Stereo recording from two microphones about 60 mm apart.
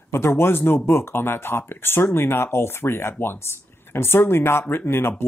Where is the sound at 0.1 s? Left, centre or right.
Left.